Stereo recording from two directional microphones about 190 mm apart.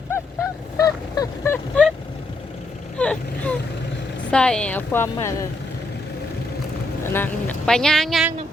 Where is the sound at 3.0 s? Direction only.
5° left (ahead or behind).